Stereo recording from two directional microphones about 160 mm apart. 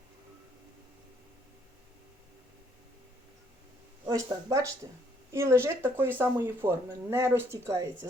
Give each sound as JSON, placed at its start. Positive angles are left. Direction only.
{"t": 4.0, "sound": "speech", "side_deg": -20}